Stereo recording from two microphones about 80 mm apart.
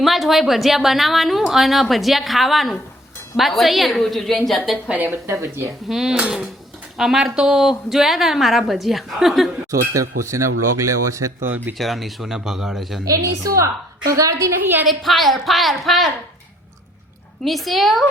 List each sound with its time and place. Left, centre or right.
0.0 s a woman's voice: centre
4.9 s speech: right
5.2 s speech: right
5.9 s a woman's voice: centre
9.9 s speech: right
11.4 s speech: right
11.8 s a woman's voice: centre
13.1 s a woman's voice: right
14.6 s speech: right
14.8 s a woman's voice: centre
17.4 s a woman's voice: centre